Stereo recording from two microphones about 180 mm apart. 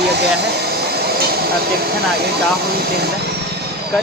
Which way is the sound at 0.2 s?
65° right (ahead or behind).